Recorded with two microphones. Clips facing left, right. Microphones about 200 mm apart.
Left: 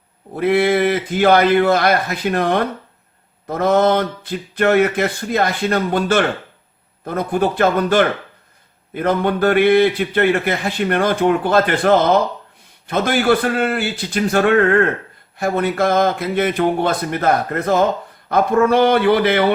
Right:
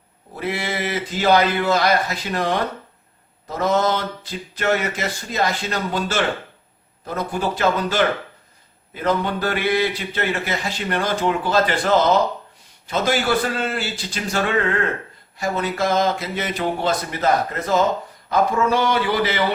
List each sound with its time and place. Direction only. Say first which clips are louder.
0.3 s a man's voice: left 11 dB; 55° left (ahead or behind)